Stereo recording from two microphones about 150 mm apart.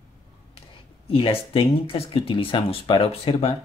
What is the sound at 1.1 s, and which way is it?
Speech, 40° left (ahead or behind).